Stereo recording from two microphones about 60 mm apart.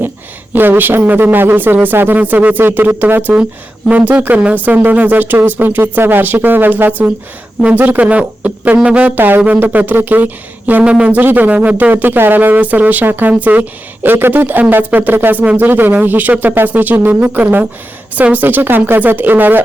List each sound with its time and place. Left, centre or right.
0.5 s a man's voice: right
4.5 s a man's voice: right